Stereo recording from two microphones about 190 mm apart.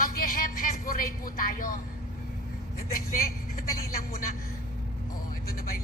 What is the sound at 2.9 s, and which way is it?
Speech, 50° left (ahead or behind).